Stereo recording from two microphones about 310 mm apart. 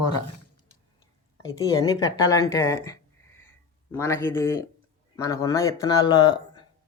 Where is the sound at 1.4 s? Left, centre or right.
Centre.